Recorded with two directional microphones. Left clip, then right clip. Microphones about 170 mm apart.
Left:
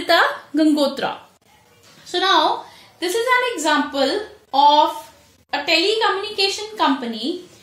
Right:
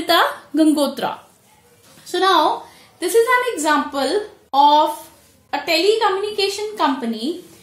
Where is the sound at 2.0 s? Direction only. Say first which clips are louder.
Right 1 dB; 25° right (ahead or behind).